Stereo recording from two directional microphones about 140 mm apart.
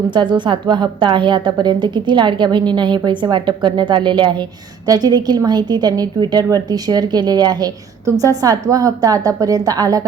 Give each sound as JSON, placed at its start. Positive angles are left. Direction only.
{"t": 0.1, "sound": "a woman's voice", "side_deg": -35}